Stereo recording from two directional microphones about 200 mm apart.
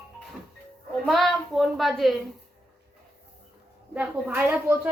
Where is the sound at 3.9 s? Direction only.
10° right (ahead or behind).